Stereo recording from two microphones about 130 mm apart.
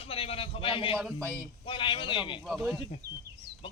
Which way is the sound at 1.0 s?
5° left (ahead or behind).